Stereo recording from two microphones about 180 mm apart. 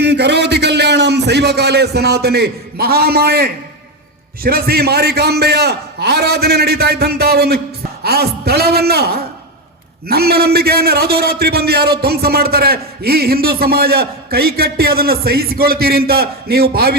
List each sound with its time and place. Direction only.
0.0 s a man's voice: 70° right (ahead or behind)